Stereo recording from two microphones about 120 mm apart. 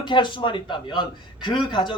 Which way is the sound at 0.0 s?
40° left (ahead or behind).